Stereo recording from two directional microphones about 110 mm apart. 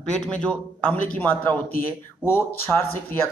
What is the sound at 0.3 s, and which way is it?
A man's voice, 10° left (ahead or behind).